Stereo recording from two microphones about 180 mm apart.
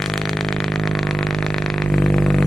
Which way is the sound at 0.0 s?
Centre (ahead or behind).